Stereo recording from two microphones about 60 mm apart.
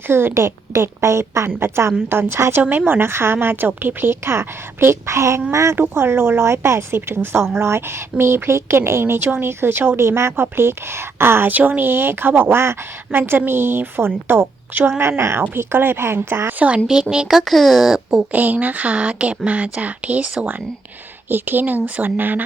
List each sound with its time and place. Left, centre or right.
0.1 s speech: right
1.5 s a woman's voice: right
5.7 s a woman's voice: right
10.0 s speech: right
11.5 s a woman's voice: right
16.8 s speech: centre
18.3 s speech: right
21.2 s a woman's voice: right